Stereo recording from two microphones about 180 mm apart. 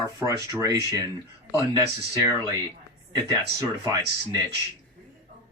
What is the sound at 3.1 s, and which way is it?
Speech, 20° right (ahead or behind).